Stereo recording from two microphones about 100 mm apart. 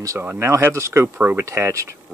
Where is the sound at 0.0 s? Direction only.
30° right (ahead or behind).